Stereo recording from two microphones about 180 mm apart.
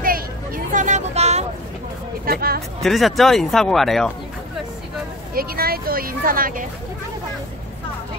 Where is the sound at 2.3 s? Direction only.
55° right (ahead or behind).